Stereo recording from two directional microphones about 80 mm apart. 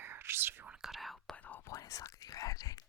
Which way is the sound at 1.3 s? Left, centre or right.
Left.